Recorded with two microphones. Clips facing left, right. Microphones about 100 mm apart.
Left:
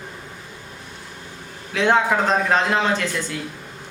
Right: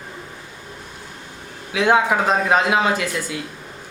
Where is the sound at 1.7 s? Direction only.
5° right (ahead or behind).